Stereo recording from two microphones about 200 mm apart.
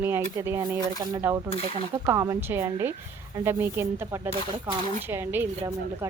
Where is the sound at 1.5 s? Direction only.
30° left (ahead or behind).